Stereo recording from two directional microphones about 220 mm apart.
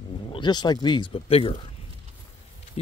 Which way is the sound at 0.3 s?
20° left (ahead or behind).